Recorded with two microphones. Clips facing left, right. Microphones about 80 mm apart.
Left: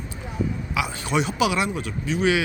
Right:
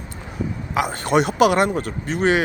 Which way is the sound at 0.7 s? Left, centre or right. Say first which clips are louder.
Right 8 dB; right.